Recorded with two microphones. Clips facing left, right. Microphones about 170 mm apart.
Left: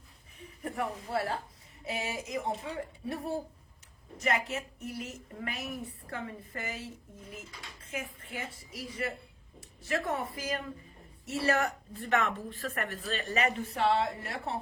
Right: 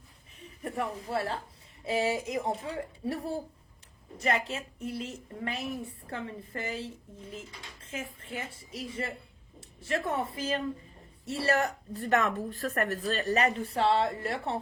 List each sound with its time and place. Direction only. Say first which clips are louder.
0.6 s speech: right 1 dB; 25° right (ahead or behind)
4.2 s a woman's voice: right 1 dB; 30° right (ahead or behind)